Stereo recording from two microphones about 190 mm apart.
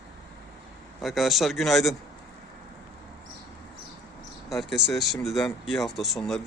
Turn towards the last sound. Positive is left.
turn(degrees=0)  # may be behind; listen again after turning